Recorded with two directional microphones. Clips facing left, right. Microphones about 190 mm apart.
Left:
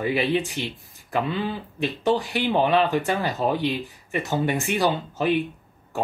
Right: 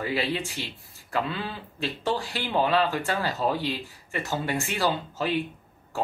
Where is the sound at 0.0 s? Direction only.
15° left (ahead or behind).